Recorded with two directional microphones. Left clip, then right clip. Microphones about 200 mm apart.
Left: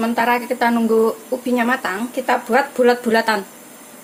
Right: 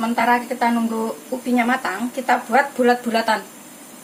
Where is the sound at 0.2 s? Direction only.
35° left (ahead or behind).